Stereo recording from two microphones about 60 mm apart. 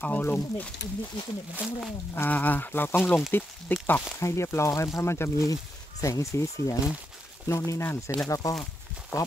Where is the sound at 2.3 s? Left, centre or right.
Left.